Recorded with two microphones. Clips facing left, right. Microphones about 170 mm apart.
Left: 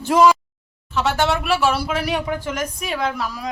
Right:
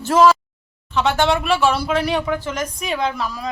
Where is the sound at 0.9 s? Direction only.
5° left (ahead or behind).